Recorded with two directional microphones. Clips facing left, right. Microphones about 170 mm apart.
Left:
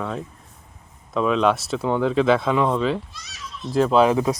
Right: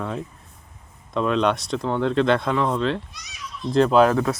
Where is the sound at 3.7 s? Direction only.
5° left (ahead or behind).